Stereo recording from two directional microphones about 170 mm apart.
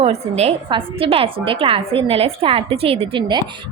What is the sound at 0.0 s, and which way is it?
A woman's voice, 40° right (ahead or behind).